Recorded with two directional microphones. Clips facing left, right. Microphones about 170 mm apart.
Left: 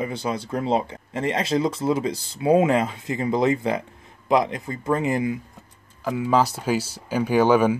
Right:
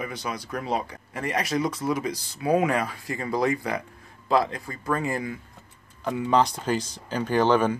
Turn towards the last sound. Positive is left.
turn(degrees=10)  # may be behind; listen again after turning